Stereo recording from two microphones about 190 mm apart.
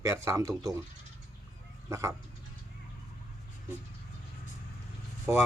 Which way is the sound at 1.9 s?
15° right (ahead or behind).